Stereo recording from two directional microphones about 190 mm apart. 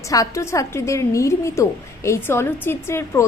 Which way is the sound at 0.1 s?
15° left (ahead or behind).